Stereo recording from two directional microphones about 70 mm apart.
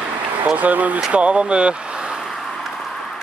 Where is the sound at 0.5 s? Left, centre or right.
Right.